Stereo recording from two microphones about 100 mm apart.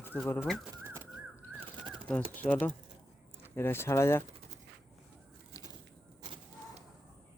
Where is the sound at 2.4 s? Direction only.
15° left (ahead or behind).